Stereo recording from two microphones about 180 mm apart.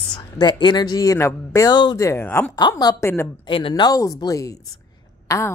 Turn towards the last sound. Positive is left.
turn(degrees=15)  # may be behind; listen again after turning